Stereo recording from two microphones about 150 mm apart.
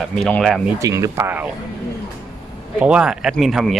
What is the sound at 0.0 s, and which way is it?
Speech, 5° left (ahead or behind).